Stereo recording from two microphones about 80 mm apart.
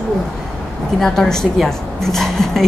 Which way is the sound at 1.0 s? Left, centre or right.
Centre.